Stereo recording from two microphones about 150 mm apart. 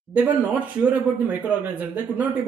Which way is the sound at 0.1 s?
10° right (ahead or behind).